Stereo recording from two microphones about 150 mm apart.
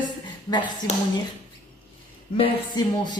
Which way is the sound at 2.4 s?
30° left (ahead or behind).